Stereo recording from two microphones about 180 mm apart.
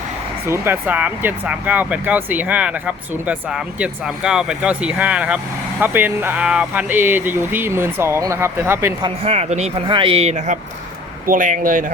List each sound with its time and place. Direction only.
0.4 s speech: 15° right (ahead or behind)
9.0 s a man's voice: 35° right (ahead or behind)